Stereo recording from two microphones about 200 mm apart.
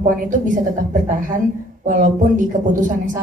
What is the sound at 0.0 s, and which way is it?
Speech, 40° right (ahead or behind).